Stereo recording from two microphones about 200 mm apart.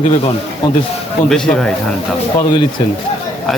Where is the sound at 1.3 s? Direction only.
5° left (ahead or behind).